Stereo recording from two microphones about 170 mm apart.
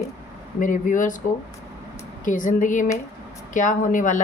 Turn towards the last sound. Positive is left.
turn(degrees=50)  # may be behind; listen again after turning